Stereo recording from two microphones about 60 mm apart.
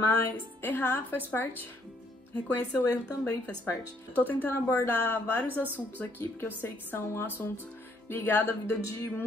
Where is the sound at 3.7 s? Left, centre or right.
Left.